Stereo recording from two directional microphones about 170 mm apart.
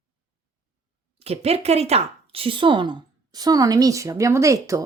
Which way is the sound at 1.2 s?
35° right (ahead or behind).